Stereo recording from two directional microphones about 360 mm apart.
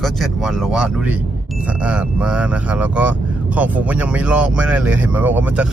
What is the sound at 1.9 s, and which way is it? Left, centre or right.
Speech, centre.